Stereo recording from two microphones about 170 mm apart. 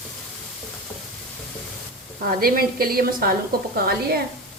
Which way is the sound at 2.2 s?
60° right (ahead or behind).